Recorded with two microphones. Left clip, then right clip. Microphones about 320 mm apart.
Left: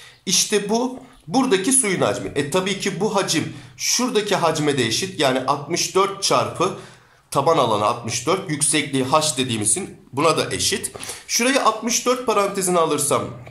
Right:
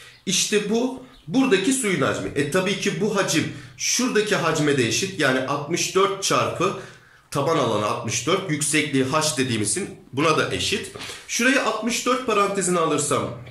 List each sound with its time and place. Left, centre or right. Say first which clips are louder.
0.3 s speech: left 2 dB; centre